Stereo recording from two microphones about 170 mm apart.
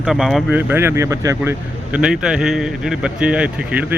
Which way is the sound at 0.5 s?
10° right (ahead or behind).